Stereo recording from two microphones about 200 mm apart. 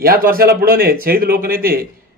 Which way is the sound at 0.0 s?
45° right (ahead or behind).